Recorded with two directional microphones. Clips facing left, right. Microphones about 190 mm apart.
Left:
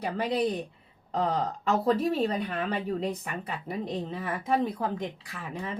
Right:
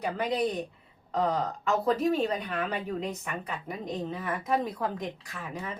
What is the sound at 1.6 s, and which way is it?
A woman's voice, 30° left (ahead or behind).